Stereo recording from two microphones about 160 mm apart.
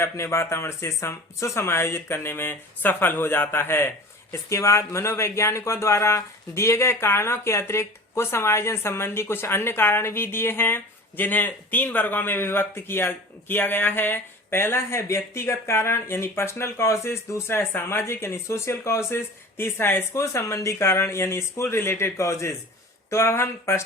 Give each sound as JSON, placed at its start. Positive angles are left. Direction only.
{"t": 0.0, "sound": "speech", "side_deg": 15}